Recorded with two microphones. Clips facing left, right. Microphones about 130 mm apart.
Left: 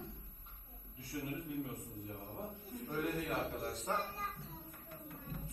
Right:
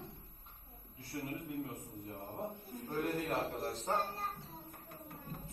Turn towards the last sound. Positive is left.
turn(degrees=-35)  # may be behind; listen again after turning